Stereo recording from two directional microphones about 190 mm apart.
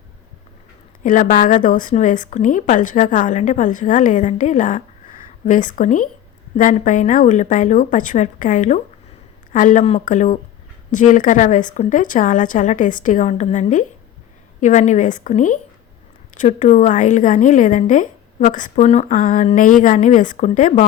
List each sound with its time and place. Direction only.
1.0 s a woman's voice: 45° left (ahead or behind)